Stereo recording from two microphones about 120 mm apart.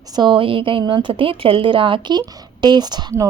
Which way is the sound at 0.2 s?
45° right (ahead or behind).